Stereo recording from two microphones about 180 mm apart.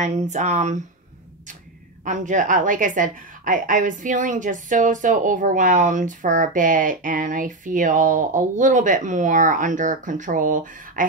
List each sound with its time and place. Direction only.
0.0 s speech: 40° right (ahead or behind)
2.0 s a woman's voice: 45° right (ahead or behind)